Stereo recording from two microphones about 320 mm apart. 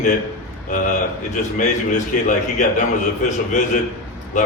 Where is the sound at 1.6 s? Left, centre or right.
Left.